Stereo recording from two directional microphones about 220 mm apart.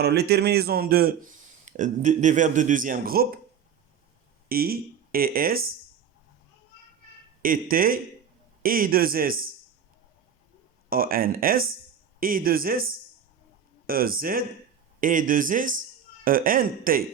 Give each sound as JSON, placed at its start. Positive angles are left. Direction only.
{"t": 0.0, "sound": "a man's voice", "side_deg": -45}
{"t": 4.4, "sound": "speech", "side_deg": -40}
{"t": 7.4, "sound": "a man's voice", "side_deg": -40}
{"t": 10.8, "sound": "a man's voice", "side_deg": -40}